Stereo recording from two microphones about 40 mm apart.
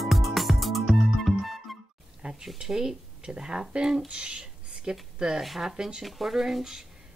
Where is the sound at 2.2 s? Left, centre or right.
Right.